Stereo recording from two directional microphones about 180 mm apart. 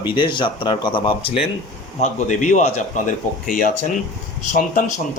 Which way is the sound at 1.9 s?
45° left (ahead or behind).